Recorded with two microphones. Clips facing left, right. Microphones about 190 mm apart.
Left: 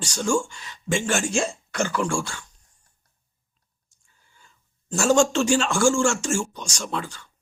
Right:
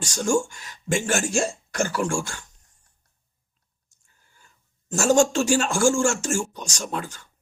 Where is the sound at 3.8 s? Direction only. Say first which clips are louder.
Left 1 dB; 45° right (ahead or behind).